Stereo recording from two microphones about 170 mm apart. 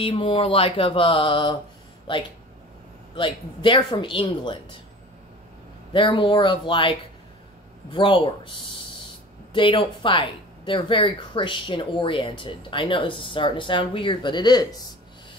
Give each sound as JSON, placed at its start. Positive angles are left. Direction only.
{"t": 0.0, "sound": "a sound", "side_deg": 30}
{"t": 3.2, "sound": "speech", "side_deg": 30}
{"t": 5.9, "sound": "speech", "side_deg": 30}
{"t": 9.5, "sound": "speech", "side_deg": 30}